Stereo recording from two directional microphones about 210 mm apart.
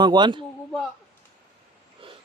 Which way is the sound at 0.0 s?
20° right (ahead or behind).